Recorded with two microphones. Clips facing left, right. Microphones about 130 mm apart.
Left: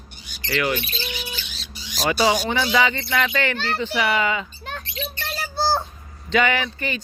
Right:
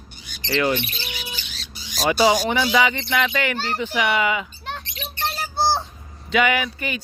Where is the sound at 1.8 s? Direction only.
40° right (ahead or behind).